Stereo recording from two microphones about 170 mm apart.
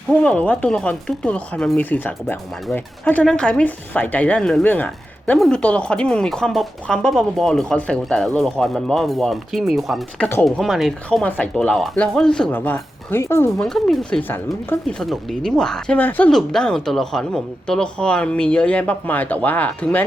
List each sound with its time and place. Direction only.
0.1 s speech: 5° left (ahead or behind)
13.6 s speech: 5° left (ahead or behind)